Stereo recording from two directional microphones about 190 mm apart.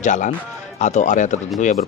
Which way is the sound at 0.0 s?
40° left (ahead or behind).